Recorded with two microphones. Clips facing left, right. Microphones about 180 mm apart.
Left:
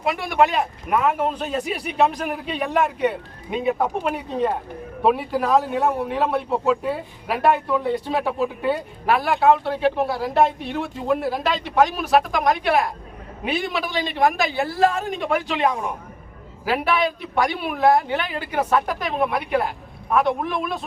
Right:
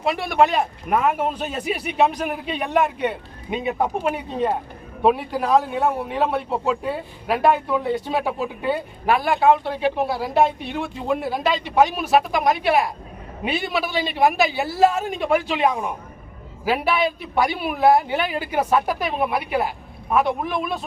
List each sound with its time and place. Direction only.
0.3 s speech: 30° right (ahead or behind)
1.3 s speech: 5° right (ahead or behind)